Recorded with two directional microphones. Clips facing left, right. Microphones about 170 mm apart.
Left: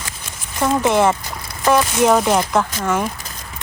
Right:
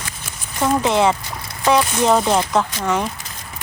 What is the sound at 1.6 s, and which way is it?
Speech, 5° left (ahead or behind).